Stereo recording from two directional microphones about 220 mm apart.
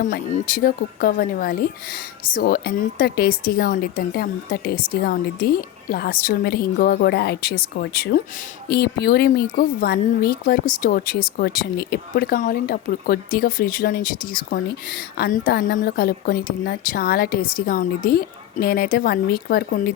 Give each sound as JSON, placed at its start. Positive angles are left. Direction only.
{"t": 0.3, "sound": "speech", "side_deg": 40}